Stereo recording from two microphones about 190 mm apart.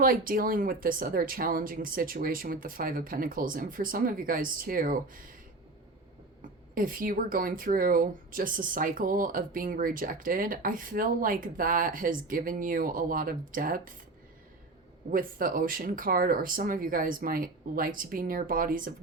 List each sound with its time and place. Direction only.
0.0 s speech: 50° right (ahead or behind)
6.7 s speech: 45° right (ahead or behind)
15.1 s speech: 45° right (ahead or behind)